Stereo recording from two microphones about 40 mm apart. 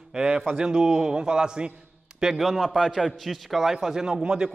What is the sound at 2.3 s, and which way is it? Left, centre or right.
A man's voice, centre.